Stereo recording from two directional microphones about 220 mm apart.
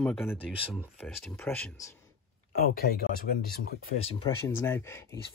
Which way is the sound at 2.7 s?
45° left (ahead or behind).